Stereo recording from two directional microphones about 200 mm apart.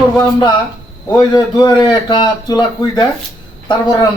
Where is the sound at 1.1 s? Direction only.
20° left (ahead or behind).